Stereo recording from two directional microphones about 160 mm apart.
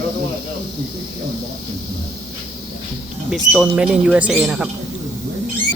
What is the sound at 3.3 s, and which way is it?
Speech, 5° right (ahead or behind).